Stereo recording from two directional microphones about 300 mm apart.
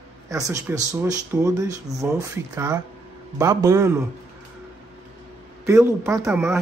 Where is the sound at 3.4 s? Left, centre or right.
Centre.